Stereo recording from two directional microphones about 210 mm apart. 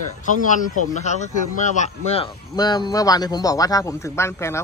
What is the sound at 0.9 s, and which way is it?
Speech, 35° left (ahead or behind).